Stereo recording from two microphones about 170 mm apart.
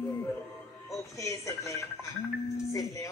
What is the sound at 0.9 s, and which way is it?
Speech, 20° left (ahead or behind).